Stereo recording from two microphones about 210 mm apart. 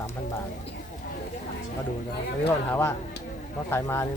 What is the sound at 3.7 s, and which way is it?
Speech, 10° left (ahead or behind).